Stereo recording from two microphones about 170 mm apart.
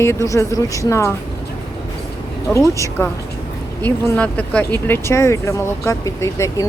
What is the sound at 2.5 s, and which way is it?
Speech, 15° left (ahead or behind).